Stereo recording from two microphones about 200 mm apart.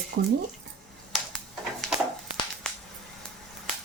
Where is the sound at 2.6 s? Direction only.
5° left (ahead or behind).